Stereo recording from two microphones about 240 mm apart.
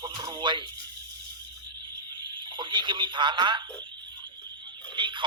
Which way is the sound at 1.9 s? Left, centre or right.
Centre.